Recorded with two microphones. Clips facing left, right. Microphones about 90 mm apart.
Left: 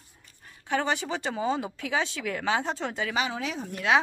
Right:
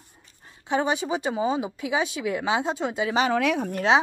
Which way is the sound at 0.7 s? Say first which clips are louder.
Right 3 dB; 20° right (ahead or behind).